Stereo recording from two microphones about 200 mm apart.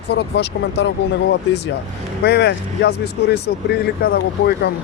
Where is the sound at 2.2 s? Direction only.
55° left (ahead or behind).